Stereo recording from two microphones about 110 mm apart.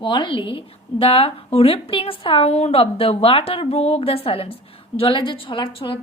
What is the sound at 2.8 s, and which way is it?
A woman's voice, 60° left (ahead or behind).